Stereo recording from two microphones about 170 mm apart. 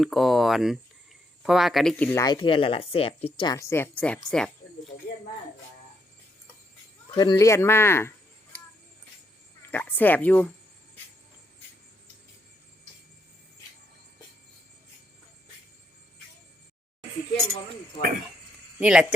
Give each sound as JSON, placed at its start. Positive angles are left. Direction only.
{"t": 0.0, "sound": "speech", "side_deg": 0}
{"t": 2.2, "sound": "speech", "side_deg": 25}
{"t": 3.4, "sound": "speech", "side_deg": 20}
{"t": 7.2, "sound": "speech", "side_deg": 20}
{"t": 9.7, "sound": "speech", "side_deg": 10}
{"t": 18.8, "sound": "speech", "side_deg": -5}